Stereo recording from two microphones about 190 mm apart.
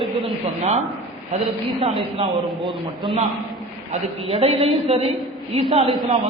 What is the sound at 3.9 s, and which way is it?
A man's voice, 30° right (ahead or behind).